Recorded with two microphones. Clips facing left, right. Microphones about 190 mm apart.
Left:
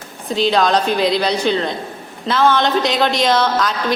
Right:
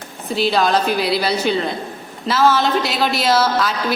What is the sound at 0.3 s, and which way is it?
A woman's voice, 5° right (ahead or behind).